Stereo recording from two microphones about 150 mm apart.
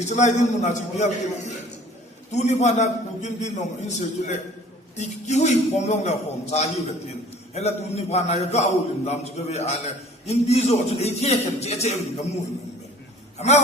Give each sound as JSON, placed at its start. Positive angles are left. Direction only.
{"t": 0.0, "sound": "a man's voice", "side_deg": 50}